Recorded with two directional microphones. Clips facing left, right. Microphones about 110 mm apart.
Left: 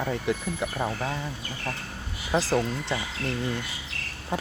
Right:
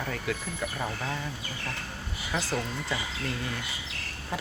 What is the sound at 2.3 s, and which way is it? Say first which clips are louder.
Speech: left 7 dB; 35° left (ahead or behind).